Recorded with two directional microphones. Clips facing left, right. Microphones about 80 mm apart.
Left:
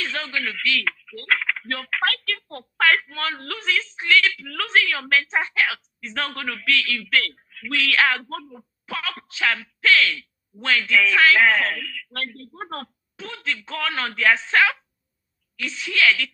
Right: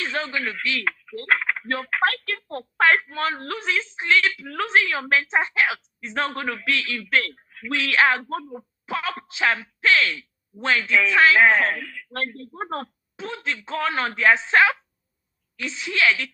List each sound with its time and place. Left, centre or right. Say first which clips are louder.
0.0 s speech: right 1 dB; right